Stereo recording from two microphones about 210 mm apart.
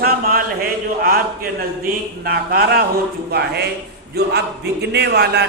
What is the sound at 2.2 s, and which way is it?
Speech, 45° right (ahead or behind).